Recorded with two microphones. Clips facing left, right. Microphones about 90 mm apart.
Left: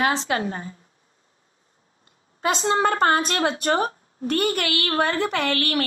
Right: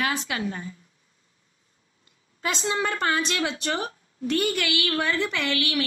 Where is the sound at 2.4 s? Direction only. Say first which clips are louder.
Left 6 dB; 50° left (ahead or behind).